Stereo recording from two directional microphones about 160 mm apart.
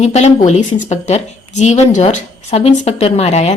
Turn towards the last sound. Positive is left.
turn(degrees=45)  # may be behind; listen again after turning